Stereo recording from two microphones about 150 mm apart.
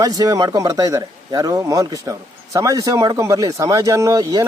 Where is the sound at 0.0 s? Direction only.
25° right (ahead or behind).